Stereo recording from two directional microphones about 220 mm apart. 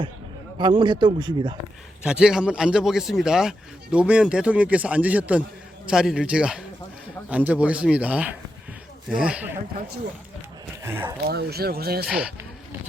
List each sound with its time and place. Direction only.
0.6 s speech: 20° right (ahead or behind)
2.0 s a man's voice: 5° right (ahead or behind)
10.8 s speech: 10° right (ahead or behind)
11.3 s speech: 45° right (ahead or behind)
12.0 s a man's voice: 5° right (ahead or behind)